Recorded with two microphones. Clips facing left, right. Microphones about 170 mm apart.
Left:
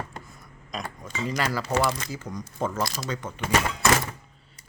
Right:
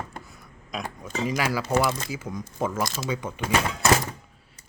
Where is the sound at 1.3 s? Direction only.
10° right (ahead or behind).